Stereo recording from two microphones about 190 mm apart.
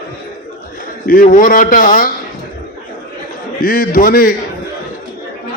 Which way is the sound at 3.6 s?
45° left (ahead or behind).